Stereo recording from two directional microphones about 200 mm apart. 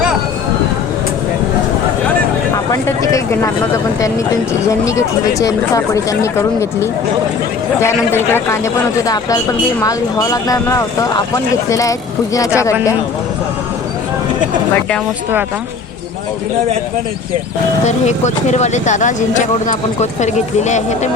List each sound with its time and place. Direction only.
4.7 s speech: 15° left (ahead or behind)
9.8 s speech: 15° left (ahead or behind)
17.8 s speech: 35° left (ahead or behind)